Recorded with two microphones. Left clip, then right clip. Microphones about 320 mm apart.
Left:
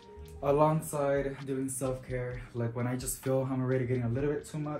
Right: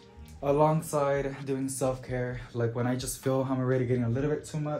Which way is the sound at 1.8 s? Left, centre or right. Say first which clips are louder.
Right 4 dB; right.